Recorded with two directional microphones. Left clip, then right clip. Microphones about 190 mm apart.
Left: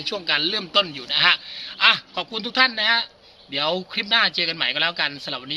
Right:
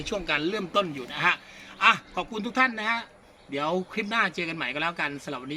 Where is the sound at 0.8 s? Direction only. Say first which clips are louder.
Left 8 dB; 5° right (ahead or behind).